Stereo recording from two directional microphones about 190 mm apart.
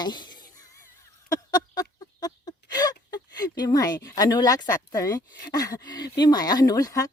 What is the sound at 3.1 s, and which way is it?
Speech, 20° left (ahead or behind).